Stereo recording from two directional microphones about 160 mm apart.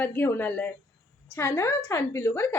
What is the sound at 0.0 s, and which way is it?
A woman's voice, 10° left (ahead or behind).